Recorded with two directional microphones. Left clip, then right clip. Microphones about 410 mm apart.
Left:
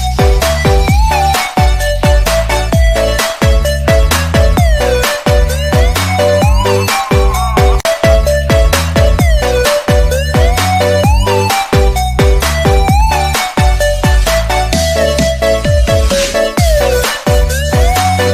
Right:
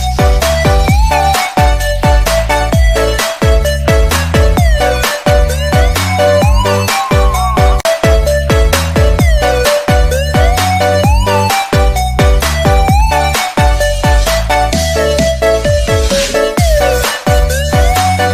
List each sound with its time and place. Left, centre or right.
0.2 s music: centre